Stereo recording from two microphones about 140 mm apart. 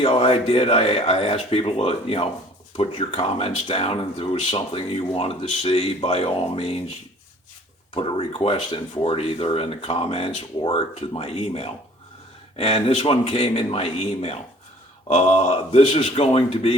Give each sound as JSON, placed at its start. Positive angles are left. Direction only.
{"t": 0.0, "sound": "speech", "side_deg": 40}
{"t": 7.9, "sound": "speech", "side_deg": 40}